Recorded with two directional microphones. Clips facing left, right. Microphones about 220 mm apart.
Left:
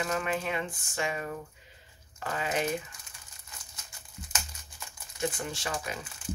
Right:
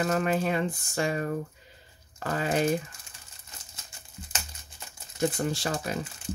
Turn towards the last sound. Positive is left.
turn(degrees=-40)  # may be behind; listen again after turning